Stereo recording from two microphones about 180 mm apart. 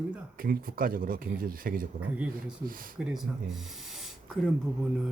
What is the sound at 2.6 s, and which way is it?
Speech, 50° right (ahead or behind).